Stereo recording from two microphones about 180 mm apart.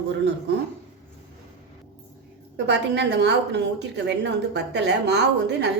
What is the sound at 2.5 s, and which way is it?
A woman's voice, 75° right (ahead or behind).